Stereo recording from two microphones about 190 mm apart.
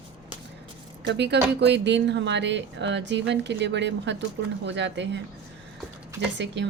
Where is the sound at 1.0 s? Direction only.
65° right (ahead or behind).